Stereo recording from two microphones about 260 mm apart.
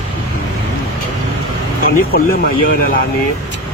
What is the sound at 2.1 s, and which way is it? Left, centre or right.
Speech, left.